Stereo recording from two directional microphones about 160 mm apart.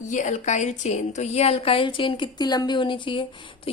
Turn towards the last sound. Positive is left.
turn(degrees=30)  # may be behind; listen again after turning